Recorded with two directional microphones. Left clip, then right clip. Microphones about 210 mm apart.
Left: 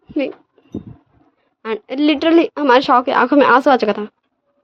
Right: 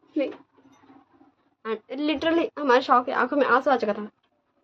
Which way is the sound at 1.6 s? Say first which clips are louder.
Left 10 dB; 45° left (ahead or behind).